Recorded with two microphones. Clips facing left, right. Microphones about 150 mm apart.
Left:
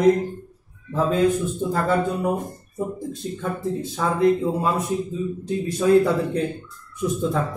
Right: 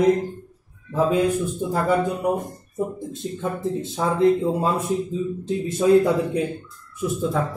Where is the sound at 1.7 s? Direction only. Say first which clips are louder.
Right 1 dB; 15° right (ahead or behind).